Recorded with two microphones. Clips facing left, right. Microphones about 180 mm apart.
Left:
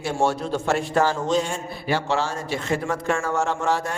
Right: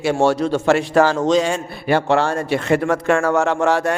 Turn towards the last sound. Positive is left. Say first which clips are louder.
# right 7 dB
turn(degrees=-70)  # may be behind; listen again after turning